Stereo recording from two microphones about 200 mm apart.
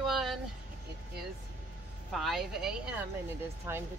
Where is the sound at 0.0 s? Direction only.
Centre (ahead or behind).